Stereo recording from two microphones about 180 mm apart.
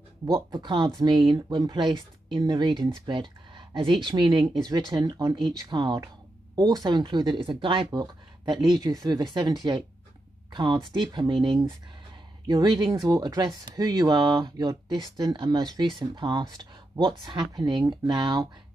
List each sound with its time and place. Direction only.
0.3 s speech: 25° right (ahead or behind)
12.4 s speech: 25° right (ahead or behind)